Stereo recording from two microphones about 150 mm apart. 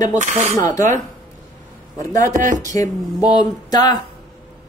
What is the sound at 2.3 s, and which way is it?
Speech, 55° right (ahead or behind).